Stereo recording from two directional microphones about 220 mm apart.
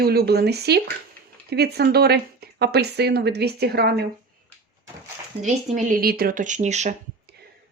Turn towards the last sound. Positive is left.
turn(degrees=-30)  # may be behind; listen again after turning